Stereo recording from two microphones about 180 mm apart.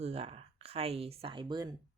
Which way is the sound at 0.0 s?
35° right (ahead or behind).